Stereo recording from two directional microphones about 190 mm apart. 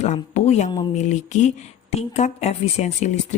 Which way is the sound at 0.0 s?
35° left (ahead or behind).